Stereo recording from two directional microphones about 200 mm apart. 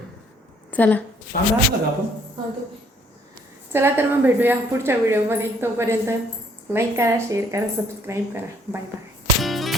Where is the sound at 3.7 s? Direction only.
10° right (ahead or behind).